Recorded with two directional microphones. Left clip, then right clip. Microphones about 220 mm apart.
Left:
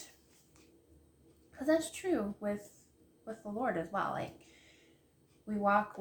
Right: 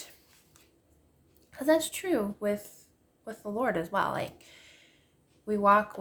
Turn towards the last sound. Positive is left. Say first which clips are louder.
# right 8 dB
turn(degrees=-45)  # may be behind; listen again after turning